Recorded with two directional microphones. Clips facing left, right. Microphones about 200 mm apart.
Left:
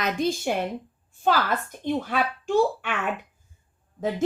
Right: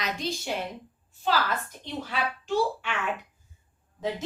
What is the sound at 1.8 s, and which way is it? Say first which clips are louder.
Speech: left 10 dB; 50° left (ahead or behind).